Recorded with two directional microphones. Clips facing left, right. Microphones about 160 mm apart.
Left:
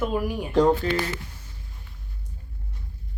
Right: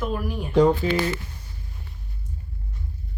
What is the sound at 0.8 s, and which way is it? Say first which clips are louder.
Speech: right 2 dB; 10° right (ahead or behind).